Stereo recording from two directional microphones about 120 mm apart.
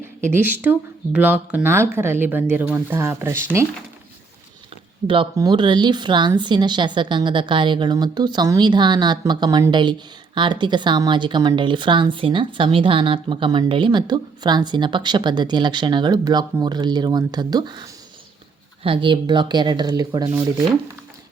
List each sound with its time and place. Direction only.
0.2 s speech: 15° right (ahead or behind)
5.0 s a woman's voice: 45° right (ahead or behind)